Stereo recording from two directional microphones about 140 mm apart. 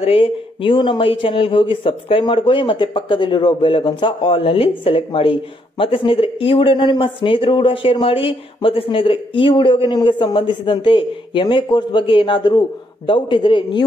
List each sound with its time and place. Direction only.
0.0 s speech: 40° left (ahead or behind)